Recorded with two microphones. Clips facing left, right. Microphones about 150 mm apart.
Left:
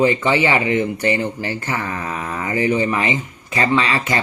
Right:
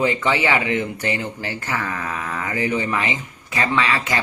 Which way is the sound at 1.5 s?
20° left (ahead or behind).